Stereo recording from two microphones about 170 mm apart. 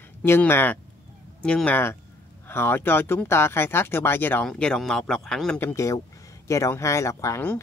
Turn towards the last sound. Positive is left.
turn(degrees=15)  # may be behind; listen again after turning